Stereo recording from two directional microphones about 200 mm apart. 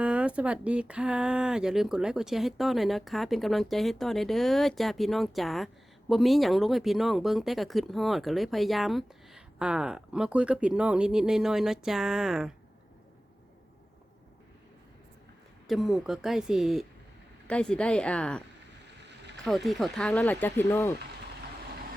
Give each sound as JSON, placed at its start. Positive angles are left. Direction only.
{"t": 0.0, "sound": "speech", "side_deg": -5}
{"t": 15.6, "sound": "speech", "side_deg": 0}
{"t": 18.9, "sound": "boat", "side_deg": -60}
{"t": 19.5, "sound": "speech", "side_deg": 0}